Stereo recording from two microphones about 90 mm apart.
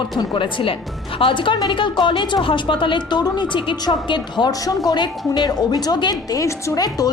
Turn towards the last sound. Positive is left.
turn(degrees=45)  # may be behind; listen again after turning